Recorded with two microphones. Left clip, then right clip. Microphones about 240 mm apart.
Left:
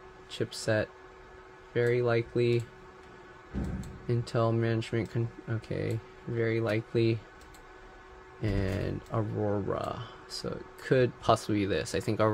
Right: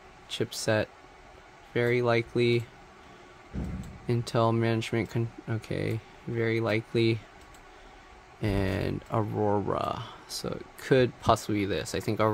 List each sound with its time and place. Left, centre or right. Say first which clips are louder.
0.3 s speech: right 2 dB; centre
4.1 s speech: right 3 dB; centre
8.4 s speech: right 3 dB; centre